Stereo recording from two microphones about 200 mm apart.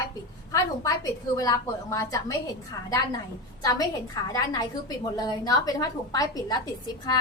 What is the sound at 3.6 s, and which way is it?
A woman's voice, 20° left (ahead or behind).